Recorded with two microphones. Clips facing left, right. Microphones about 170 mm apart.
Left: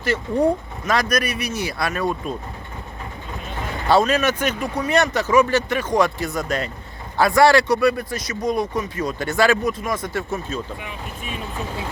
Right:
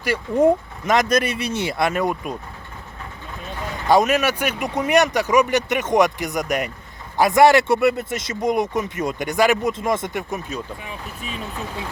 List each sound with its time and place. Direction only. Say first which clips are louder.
0.0 s speech: right 2 dB; 15° right (ahead or behind)
3.8 s speech: right 1 dB; 15° right (ahead or behind)